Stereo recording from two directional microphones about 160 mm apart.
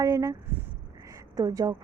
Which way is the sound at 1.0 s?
20° right (ahead or behind).